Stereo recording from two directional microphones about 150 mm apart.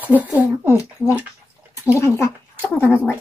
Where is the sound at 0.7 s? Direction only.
20° left (ahead or behind).